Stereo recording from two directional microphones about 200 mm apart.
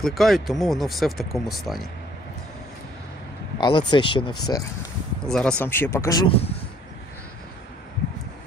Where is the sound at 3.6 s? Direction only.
20° left (ahead or behind).